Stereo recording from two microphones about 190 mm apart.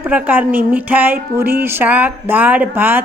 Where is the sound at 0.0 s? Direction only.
10° right (ahead or behind).